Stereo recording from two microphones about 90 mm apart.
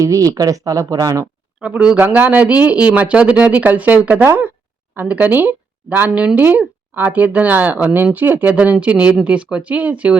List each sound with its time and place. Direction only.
0.0 s speech: 40° right (ahead or behind)
1.6 s speech: 10° right (ahead or behind)